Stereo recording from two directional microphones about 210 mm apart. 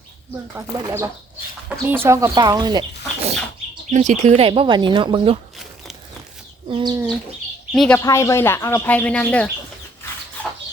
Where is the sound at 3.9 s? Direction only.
35° right (ahead or behind).